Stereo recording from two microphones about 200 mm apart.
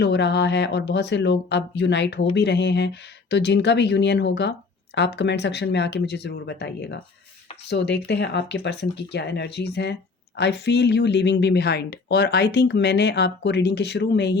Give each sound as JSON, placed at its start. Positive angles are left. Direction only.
{"t": 0.0, "sound": "speech", "side_deg": 60}